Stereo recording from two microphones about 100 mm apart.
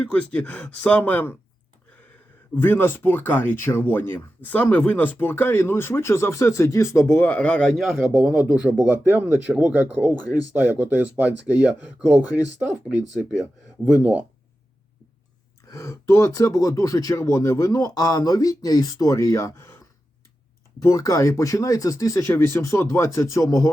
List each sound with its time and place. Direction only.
0.0 s speech: 15° left (ahead or behind)
2.6 s speech: 20° left (ahead or behind)
7.9 s speech: 5° right (ahead or behind)
10.1 s speech: 40° left (ahead or behind)
10.5 s speech: 20° right (ahead or behind)
13.8 s speech: 10° right (ahead or behind)
15.7 s speech: 30° left (ahead or behind)
20.8 s speech: 35° left (ahead or behind)